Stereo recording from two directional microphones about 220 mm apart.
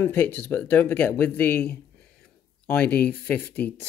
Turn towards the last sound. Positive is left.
turn(degrees=10)  # may be behind; listen again after turning